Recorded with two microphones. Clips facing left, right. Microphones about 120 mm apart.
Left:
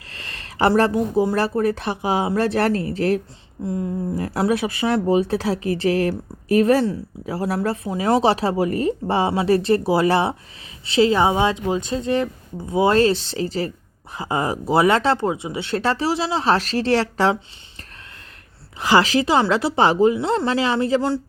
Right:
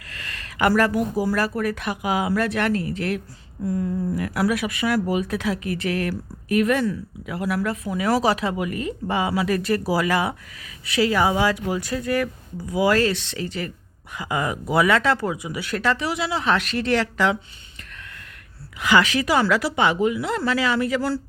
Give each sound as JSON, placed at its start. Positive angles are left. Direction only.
{"t": 0.1, "sound": "speech", "side_deg": 30}
{"t": 18.8, "sound": "speech", "side_deg": 35}